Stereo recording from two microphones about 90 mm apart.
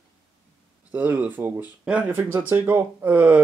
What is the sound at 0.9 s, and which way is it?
Speech, 20° right (ahead or behind).